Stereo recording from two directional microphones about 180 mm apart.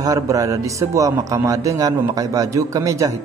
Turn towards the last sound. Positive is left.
turn(degrees=-20)  # may be behind; listen again after turning